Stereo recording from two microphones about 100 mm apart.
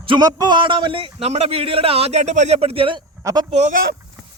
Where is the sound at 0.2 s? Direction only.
40° right (ahead or behind); by 3.0 s 65° right (ahead or behind).